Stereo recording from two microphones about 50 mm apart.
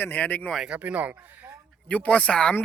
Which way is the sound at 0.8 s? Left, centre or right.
Right.